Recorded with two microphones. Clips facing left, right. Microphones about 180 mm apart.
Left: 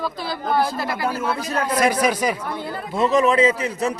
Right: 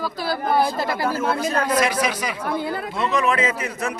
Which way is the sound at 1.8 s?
45° left (ahead or behind).